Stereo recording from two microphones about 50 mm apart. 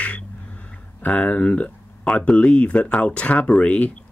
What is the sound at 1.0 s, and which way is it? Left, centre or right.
Speech, left.